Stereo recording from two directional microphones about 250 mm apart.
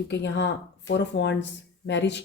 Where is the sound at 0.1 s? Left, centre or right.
Left.